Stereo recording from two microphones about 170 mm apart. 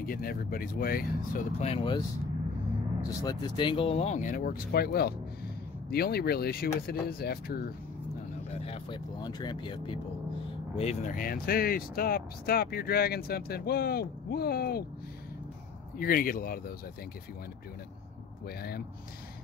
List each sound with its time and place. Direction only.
0.0 s speech: 60° left (ahead or behind)
1.6 s speech: 35° left (ahead or behind)
3.3 s speech: 25° left (ahead or behind); by 7.7 s 65° left (ahead or behind)
8.6 s speech: 30° left (ahead or behind)
10.8 s speech: 40° left (ahead or behind); by 14.9 s 65° left (ahead or behind)
16.0 s speech: 55° left (ahead or behind)